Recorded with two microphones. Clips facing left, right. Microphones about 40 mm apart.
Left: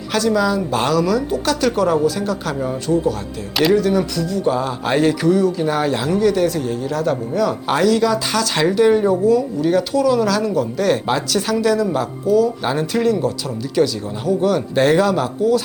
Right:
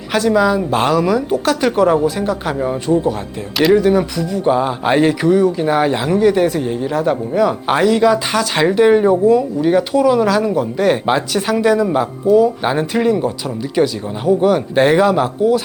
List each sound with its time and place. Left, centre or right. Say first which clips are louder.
0.1 s speech: right 3 dB; centre